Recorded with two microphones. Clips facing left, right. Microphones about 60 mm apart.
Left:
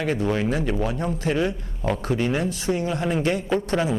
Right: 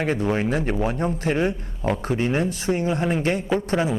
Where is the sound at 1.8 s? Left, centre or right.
Right.